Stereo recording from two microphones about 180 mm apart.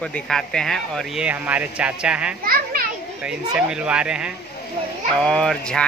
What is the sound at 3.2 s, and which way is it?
Speech, 5° right (ahead or behind).